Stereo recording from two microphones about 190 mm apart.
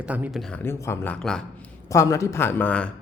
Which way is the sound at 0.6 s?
15° left (ahead or behind).